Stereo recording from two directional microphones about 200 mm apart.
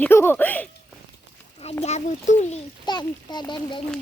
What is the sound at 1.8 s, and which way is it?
Speech, 35° left (ahead or behind).